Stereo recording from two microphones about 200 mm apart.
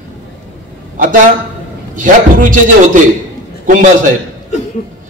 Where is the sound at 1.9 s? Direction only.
40° right (ahead or behind).